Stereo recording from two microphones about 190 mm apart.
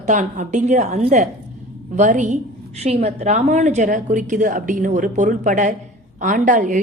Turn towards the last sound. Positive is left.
turn(degrees=-40)  # may be behind; listen again after turning